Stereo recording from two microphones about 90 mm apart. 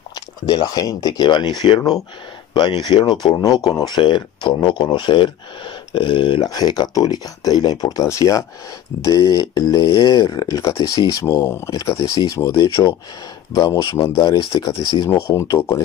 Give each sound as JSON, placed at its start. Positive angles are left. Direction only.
{"t": 0.1, "sound": "speech", "side_deg": 50}
{"t": 4.0, "sound": "speech", "side_deg": 60}
{"t": 6.4, "sound": "speech", "side_deg": 45}
{"t": 11.7, "sound": "speech", "side_deg": 40}
{"t": 14.1, "sound": "speech", "side_deg": 60}
{"t": 15.0, "sound": "speech", "side_deg": 30}
{"t": 15.4, "sound": "speech", "side_deg": 40}